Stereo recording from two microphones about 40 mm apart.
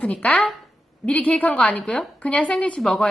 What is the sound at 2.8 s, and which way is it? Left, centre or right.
Speech, centre.